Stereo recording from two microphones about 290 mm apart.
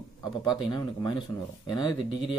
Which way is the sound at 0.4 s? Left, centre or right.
Centre.